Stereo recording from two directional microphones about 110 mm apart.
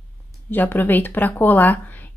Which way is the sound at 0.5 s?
15° left (ahead or behind).